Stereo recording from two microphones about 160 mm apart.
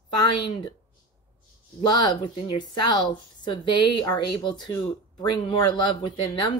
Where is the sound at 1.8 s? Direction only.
25° left (ahead or behind).